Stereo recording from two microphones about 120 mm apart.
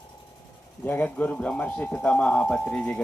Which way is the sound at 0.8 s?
15° left (ahead or behind).